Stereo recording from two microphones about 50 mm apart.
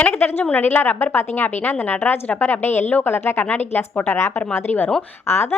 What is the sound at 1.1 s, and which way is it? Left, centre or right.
Speech, left.